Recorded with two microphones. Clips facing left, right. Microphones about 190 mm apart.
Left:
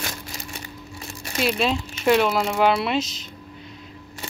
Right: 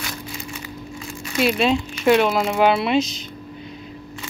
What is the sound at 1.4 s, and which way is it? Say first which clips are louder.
Speech: right 4 dB; centre (ahead or behind).